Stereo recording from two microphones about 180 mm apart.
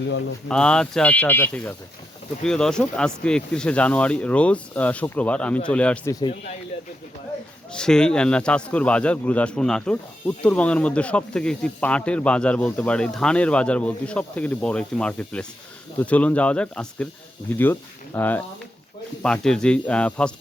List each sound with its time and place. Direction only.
0.4 s speech: 5° left (ahead or behind)
6.1 s speech: 20° left (ahead or behind)
7.7 s speech: 5° left (ahead or behind)